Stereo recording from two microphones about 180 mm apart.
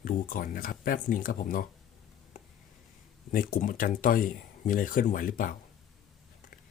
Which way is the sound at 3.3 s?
50° left (ahead or behind).